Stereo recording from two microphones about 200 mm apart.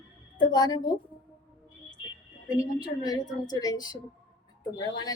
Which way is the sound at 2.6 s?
20° left (ahead or behind).